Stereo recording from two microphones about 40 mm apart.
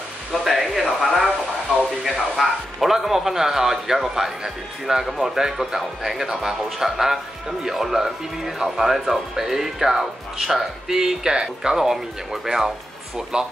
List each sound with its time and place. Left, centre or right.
0.4 s a sound: centre
2.0 s speech: centre
13.3 s speech: right